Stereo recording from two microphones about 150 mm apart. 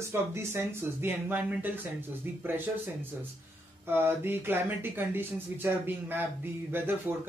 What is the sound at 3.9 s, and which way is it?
Speech, 15° right (ahead or behind).